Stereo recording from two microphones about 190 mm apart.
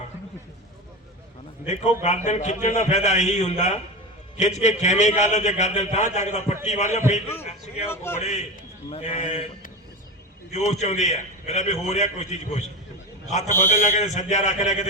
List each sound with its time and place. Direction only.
1.6 s a man's voice: 35° left (ahead or behind)
7.9 s a man's voice: 10° left (ahead or behind)
8.2 s a man's voice: 40° left (ahead or behind)